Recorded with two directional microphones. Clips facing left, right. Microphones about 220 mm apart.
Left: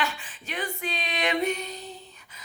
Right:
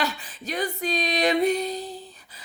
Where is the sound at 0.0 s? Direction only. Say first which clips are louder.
Right 3 dB; 40° right (ahead or behind).